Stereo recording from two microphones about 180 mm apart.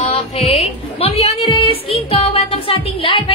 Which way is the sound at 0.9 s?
35° left (ahead or behind).